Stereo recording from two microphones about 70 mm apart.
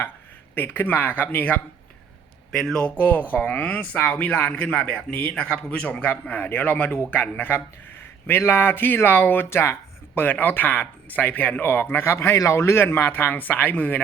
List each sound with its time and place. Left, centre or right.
0.5 s speech: left
2.5 s speech: centre; by 9.7 s left
10.2 s speech: left